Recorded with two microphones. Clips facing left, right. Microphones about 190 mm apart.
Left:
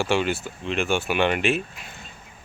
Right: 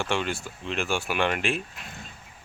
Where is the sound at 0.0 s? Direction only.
5° left (ahead or behind).